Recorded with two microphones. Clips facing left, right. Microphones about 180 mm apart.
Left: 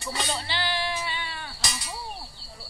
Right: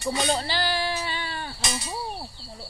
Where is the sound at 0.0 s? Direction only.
40° right (ahead or behind).